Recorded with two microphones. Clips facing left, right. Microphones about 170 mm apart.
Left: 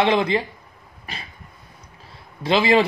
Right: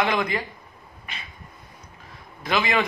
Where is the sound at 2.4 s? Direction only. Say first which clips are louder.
Left 6 dB; 30° left (ahead or behind).